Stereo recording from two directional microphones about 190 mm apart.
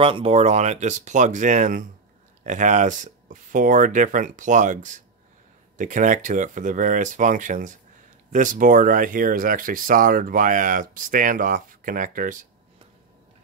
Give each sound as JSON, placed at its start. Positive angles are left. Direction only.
{"t": 0.0, "sound": "speech", "side_deg": -30}